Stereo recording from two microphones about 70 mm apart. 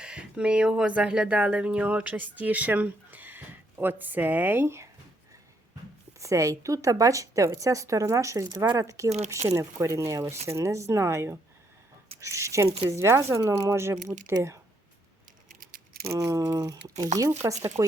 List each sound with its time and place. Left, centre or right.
0.0 s speech: centre
6.1 s speech: right
8.4 s speech: right
8.8 s speech: right
16.0 s speech: right